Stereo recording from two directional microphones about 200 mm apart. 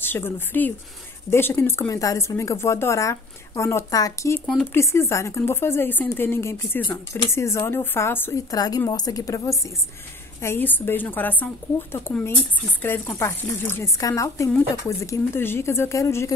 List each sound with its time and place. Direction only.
0.0 s speech: 10° left (ahead or behind)